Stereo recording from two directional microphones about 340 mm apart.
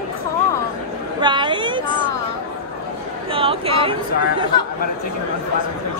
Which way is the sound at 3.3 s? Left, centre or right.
Centre.